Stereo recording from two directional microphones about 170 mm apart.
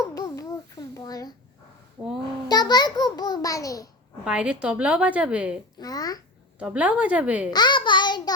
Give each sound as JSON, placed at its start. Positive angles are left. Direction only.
{"t": 0.0, "sound": "babbling", "side_deg": 20}
{"t": 2.5, "sound": "a sound", "side_deg": 25}
{"t": 4.3, "sound": "a woman's voice", "side_deg": -5}
{"t": 5.8, "sound": "a sound", "side_deg": 20}
{"t": 6.6, "sound": "a woman's voice", "side_deg": -10}
{"t": 7.5, "sound": "child singing", "side_deg": 25}